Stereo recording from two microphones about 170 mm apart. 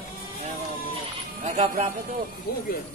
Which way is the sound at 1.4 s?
40° right (ahead or behind).